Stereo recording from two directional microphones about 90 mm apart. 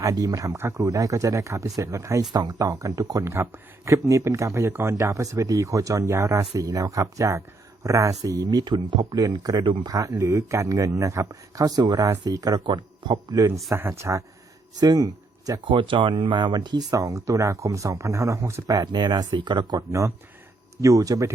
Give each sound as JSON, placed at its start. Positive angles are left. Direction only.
{"t": 0.0, "sound": "speech", "side_deg": -40}
{"t": 2.3, "sound": "speech", "side_deg": -45}
{"t": 9.6, "sound": "speech", "side_deg": -65}
{"t": 9.9, "sound": "speech", "side_deg": -40}
{"t": 13.7, "sound": "speech", "side_deg": -30}
{"t": 14.8, "sound": "speech", "side_deg": -45}
{"t": 15.6, "sound": "speech", "side_deg": -70}
{"t": 16.9, "sound": "speech", "side_deg": -40}
{"t": 18.7, "sound": "speech", "side_deg": -50}
{"t": 19.9, "sound": "speech", "side_deg": -35}